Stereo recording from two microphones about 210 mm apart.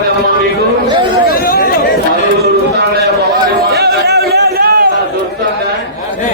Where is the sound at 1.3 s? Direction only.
45° left (ahead or behind).